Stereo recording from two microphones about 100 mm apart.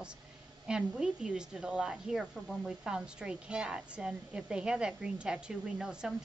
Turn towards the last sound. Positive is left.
turn(degrees=-5)  # may be behind; listen again after turning